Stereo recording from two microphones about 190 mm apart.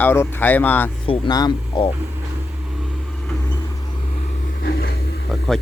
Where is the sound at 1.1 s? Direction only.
20° left (ahead or behind).